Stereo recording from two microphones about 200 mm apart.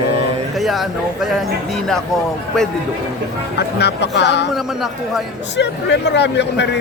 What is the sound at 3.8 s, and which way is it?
Speech, 55° left (ahead or behind).